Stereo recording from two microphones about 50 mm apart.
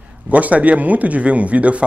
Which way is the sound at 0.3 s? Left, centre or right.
Right.